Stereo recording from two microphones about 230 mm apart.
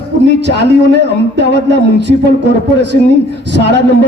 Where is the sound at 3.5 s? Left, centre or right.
Right.